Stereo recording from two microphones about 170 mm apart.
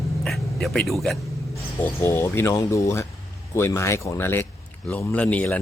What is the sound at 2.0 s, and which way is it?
A man's voice, 15° left (ahead or behind).